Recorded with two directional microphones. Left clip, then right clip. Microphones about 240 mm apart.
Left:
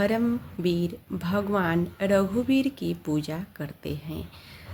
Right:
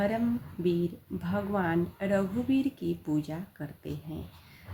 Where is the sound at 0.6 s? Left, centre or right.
Left.